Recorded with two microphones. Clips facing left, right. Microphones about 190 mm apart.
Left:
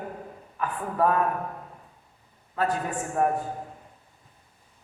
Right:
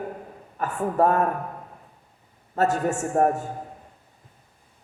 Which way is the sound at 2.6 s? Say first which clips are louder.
Right 5 dB; 45° right (ahead or behind).